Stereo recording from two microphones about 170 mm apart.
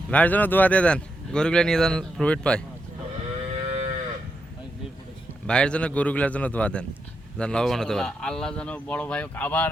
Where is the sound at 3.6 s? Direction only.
35° right (ahead or behind).